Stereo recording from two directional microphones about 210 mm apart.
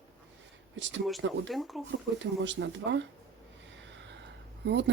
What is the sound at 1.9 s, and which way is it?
Speech, 60° right (ahead or behind).